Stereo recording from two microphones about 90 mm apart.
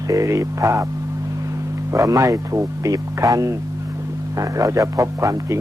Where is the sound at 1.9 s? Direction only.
35° right (ahead or behind).